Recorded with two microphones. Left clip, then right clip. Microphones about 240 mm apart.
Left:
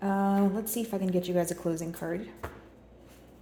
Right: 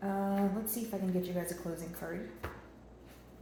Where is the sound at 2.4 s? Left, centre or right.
Left.